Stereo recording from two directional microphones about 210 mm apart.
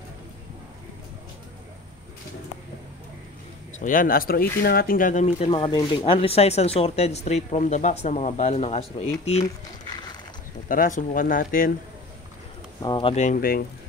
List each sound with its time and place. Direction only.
3.8 s speech: 40° left (ahead or behind)
10.7 s speech: 40° left (ahead or behind)
12.8 s speech: 25° left (ahead or behind); by 13.7 s 45° left (ahead or behind)